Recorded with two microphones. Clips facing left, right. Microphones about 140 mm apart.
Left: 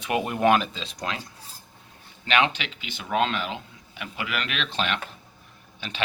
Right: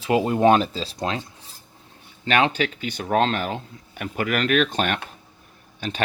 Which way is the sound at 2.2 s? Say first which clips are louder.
Right 4 dB; 40° right (ahead or behind).